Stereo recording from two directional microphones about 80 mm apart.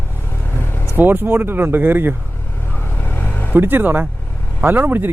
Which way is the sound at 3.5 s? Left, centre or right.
Right.